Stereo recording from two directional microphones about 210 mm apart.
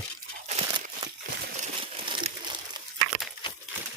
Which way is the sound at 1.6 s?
25° right (ahead or behind).